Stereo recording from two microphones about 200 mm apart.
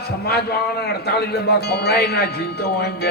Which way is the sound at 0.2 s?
55° left (ahead or behind).